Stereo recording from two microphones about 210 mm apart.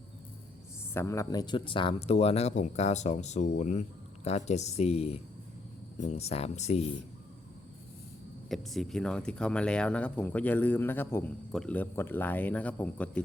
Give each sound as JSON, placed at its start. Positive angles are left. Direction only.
{"t": 0.9, "sound": "speech", "side_deg": 15}
{"t": 8.4, "sound": "speech", "side_deg": 0}